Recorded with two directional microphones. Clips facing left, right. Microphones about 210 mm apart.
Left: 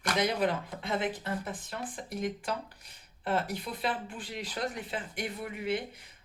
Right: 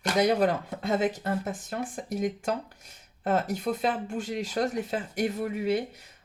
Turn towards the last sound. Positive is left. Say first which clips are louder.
# right 6 dB
turn(degrees=-40)  # may be behind; listen again after turning